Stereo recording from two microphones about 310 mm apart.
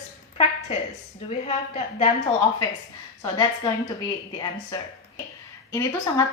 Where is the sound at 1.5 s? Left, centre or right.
Centre.